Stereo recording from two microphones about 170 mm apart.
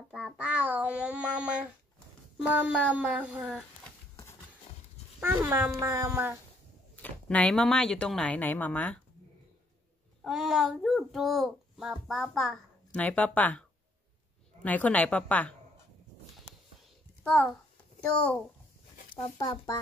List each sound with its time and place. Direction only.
0.1 s a child's voice: 5° right (ahead or behind)
5.2 s speech: 15° right (ahead or behind)
7.0 s speech: 5° left (ahead or behind)
10.2 s a child's voice: centre (ahead or behind)
17.2 s a child's voice: 5° left (ahead or behind)
19.2 s speech: 25° left (ahead or behind)